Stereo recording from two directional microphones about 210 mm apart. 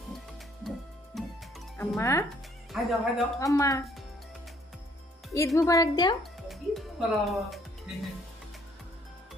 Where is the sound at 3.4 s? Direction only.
15° left (ahead or behind).